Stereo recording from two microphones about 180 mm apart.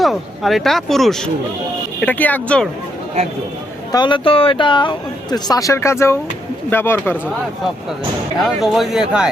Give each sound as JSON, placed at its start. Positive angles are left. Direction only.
{"t": 0.0, "sound": "speech", "side_deg": 0}
{"t": 3.9, "sound": "speech", "side_deg": 25}
{"t": 8.4, "sound": "speech", "side_deg": 0}